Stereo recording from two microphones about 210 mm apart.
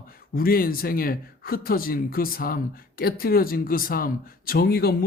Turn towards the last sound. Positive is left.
turn(degrees=45)  # may be behind; listen again after turning